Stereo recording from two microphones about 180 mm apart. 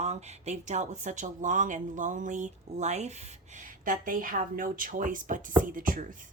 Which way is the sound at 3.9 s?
50° right (ahead or behind).